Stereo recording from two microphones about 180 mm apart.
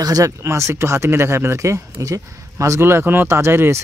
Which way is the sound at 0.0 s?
20° right (ahead or behind).